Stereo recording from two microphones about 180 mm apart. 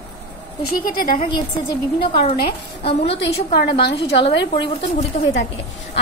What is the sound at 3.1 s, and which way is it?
Speech, 65° left (ahead or behind).